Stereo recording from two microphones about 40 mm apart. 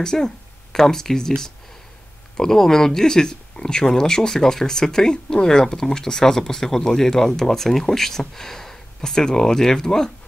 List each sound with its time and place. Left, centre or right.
0.0 s speech: centre